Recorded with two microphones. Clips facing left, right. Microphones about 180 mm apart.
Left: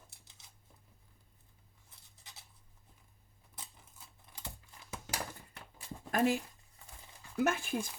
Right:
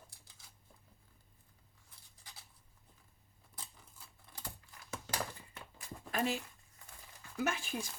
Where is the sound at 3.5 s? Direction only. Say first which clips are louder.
Even; 20° left (ahead or behind).